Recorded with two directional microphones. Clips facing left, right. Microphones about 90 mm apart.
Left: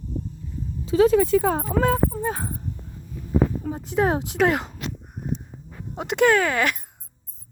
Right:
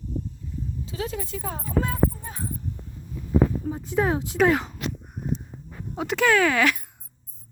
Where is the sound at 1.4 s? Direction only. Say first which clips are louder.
Left 7 dB; 85° left.